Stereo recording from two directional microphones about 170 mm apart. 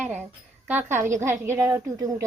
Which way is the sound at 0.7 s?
10° right (ahead or behind).